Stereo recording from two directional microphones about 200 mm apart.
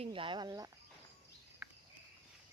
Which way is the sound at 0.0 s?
25° right (ahead or behind).